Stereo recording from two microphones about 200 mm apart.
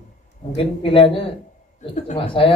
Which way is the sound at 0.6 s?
25° left (ahead or behind).